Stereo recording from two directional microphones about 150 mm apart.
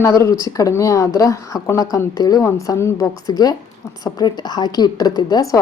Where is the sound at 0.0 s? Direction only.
20° left (ahead or behind).